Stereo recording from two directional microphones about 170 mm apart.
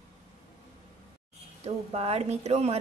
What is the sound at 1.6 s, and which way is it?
A woman's voice, 35° right (ahead or behind).